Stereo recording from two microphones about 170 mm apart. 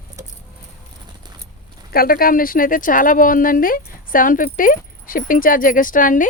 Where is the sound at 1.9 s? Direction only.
60° left (ahead or behind).